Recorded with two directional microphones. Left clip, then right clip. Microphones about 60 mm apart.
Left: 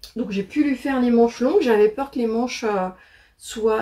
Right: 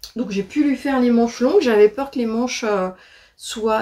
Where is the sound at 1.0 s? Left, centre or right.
Right.